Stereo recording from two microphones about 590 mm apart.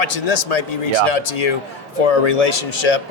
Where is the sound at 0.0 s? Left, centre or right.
Left.